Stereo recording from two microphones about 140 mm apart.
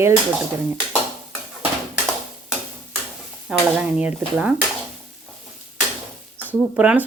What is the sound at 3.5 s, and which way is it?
A woman's voice, 5° right (ahead or behind).